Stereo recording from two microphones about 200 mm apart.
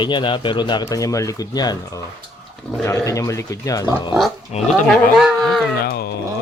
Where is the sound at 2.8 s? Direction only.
15° left (ahead or behind).